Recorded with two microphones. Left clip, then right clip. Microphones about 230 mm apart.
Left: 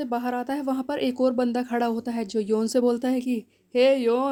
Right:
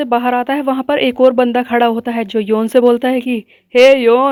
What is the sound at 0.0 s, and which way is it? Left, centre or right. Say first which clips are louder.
Speech: right 14 dB; right.